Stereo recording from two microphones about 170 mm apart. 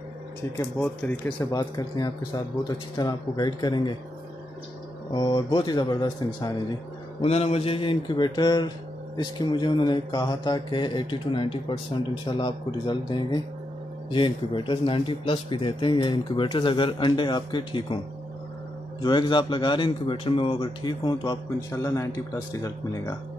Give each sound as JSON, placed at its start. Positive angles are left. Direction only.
{"t": 0.6, "sound": "a man's voice", "side_deg": 10}
{"t": 5.1, "sound": "a man's voice", "side_deg": 25}
{"t": 7.2, "sound": "a man's voice", "side_deg": 35}
{"t": 19.0, "sound": "a man's voice", "side_deg": 25}